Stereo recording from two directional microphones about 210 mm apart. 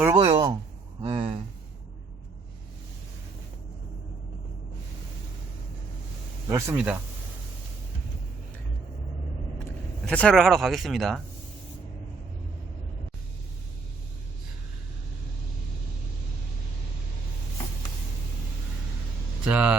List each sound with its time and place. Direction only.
0.0 s a sound: 15° right (ahead or behind)
6.5 s speech: 10° right (ahead or behind)
10.1 s speech: 5° left (ahead or behind)
19.5 s speech: 5° right (ahead or behind)